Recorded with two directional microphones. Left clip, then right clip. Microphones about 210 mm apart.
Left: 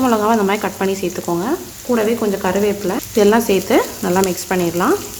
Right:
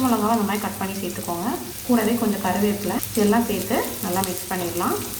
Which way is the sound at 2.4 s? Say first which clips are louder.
Left 6 dB; 55° left (ahead or behind).